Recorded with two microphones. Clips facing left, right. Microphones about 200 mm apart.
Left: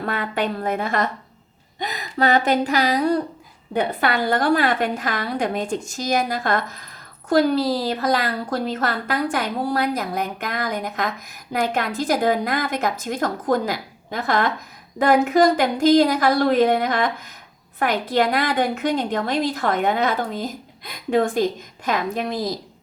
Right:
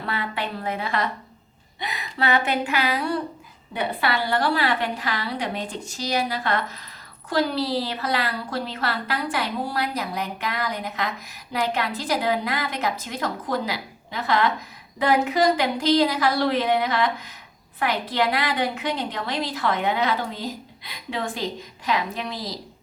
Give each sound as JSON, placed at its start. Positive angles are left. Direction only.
{"t": 0.0, "sound": "a woman's voice", "side_deg": 45}